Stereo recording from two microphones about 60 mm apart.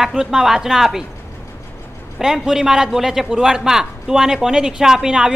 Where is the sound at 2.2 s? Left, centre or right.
Centre.